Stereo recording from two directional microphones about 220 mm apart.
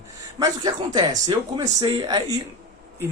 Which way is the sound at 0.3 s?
20° right (ahead or behind).